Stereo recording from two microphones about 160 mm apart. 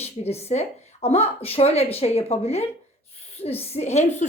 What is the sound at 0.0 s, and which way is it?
A woman's voice, 40° left (ahead or behind).